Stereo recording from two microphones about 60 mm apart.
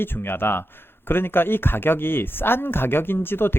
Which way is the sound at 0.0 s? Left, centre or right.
Left.